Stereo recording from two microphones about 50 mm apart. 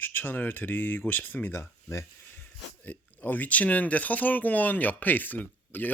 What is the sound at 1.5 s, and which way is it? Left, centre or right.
Speech, left.